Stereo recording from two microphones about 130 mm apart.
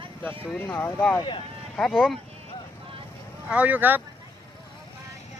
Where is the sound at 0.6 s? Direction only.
15° left (ahead or behind).